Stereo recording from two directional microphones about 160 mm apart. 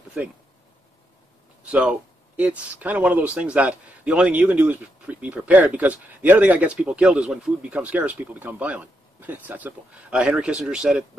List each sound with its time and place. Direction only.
1.7 s speech: 5° right (ahead or behind)